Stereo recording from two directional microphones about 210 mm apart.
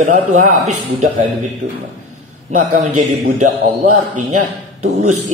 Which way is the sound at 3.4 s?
90° right.